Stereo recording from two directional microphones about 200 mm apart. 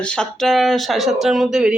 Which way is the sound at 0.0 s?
5° left (ahead or behind).